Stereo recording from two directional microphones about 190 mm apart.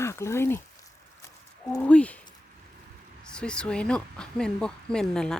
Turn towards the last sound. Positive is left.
turn(degrees=5)  # may be behind; listen again after turning